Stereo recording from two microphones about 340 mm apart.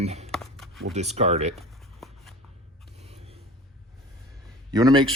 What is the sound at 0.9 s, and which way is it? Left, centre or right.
Speech, centre.